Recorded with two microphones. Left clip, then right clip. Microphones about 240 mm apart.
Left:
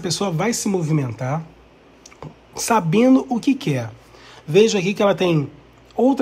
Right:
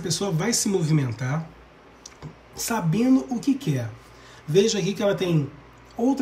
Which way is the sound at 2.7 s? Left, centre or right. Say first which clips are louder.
Left 7 dB; left.